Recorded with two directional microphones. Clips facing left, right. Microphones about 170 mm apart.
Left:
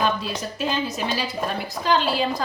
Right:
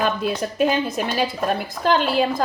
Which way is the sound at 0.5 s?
55° right (ahead or behind).